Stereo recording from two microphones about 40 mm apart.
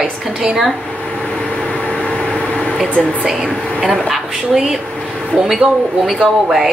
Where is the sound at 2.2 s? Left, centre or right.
Centre.